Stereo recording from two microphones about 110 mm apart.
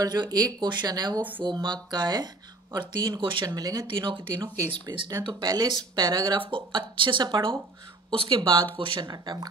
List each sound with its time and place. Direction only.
0.0 s speech: 40° right (ahead or behind)
8.1 s speech: 55° right (ahead or behind)
8.4 s speech: 45° right (ahead or behind)
9.0 s speech: 40° right (ahead or behind)